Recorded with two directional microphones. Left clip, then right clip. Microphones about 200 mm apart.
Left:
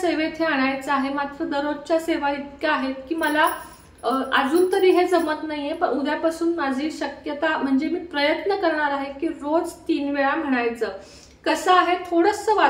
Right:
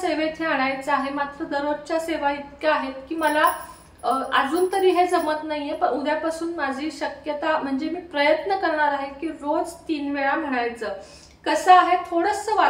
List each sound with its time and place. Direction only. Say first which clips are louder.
0.0 s a woman's voice: left 1 dB; 15° left (ahead or behind)